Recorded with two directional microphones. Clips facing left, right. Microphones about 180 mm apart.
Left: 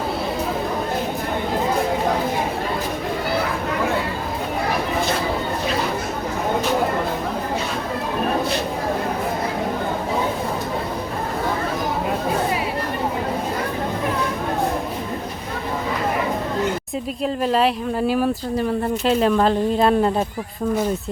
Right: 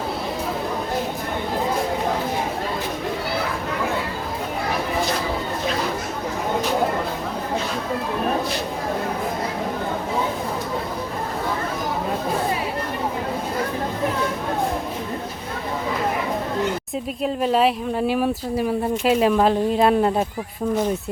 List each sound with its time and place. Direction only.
17.2 s speech: centre (ahead or behind)